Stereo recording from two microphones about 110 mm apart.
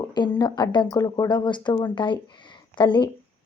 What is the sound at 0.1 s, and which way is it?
Speech, 40° left (ahead or behind).